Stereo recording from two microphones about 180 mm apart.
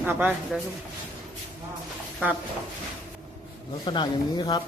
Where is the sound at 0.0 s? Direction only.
10° right (ahead or behind).